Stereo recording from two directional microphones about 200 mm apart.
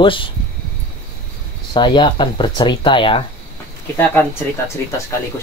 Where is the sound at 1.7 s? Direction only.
25° left (ahead or behind).